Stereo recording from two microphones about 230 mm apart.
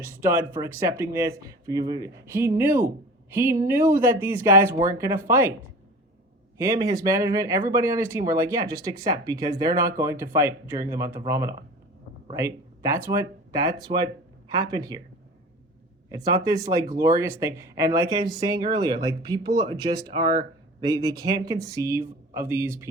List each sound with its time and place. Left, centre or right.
0.0 s speech: centre
6.6 s speech: centre
16.0 s speech: centre